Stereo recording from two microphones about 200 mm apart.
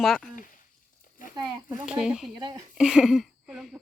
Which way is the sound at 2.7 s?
Centre (ahead or behind).